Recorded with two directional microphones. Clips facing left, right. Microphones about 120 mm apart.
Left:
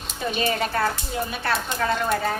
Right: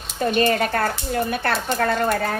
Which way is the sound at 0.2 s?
50° right (ahead or behind).